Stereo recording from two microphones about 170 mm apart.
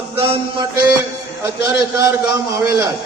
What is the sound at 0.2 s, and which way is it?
Mantra, 35° right (ahead or behind).